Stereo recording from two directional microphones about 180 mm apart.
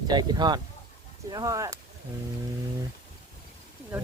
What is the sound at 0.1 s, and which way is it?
Speech, 25° right (ahead or behind).